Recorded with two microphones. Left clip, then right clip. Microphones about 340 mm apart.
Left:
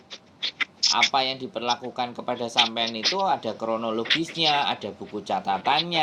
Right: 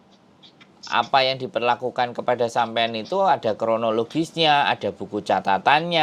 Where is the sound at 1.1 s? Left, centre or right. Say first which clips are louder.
Right 5 dB; right.